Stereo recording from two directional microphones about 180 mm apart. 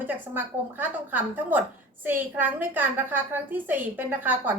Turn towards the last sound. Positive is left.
turn(degrees=-10)  # may be behind; listen again after turning